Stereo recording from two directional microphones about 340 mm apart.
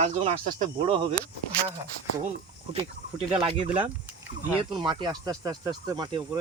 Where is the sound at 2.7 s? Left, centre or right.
Centre.